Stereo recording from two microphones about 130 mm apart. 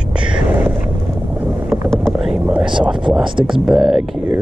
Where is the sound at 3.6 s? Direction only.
5° right (ahead or behind).